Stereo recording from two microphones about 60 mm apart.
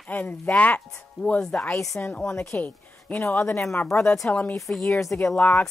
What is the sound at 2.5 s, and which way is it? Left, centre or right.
Speech, left.